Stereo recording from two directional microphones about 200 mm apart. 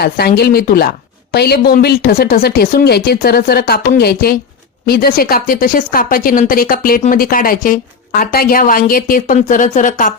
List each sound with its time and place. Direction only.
0.0 s speech: 50° left (ahead or behind)